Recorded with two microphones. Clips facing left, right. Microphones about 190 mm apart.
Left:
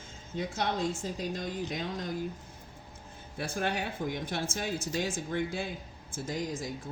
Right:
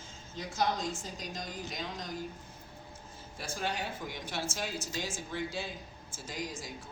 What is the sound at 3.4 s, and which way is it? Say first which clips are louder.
Speech: left 4 dB; 60° left (ahead or behind).